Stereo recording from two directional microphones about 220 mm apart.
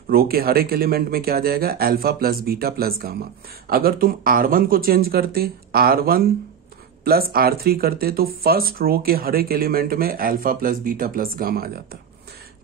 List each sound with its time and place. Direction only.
0.1 s speech: 45° right (ahead or behind)